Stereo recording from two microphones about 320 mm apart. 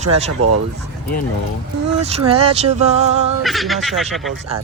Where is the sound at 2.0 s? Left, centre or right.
Centre.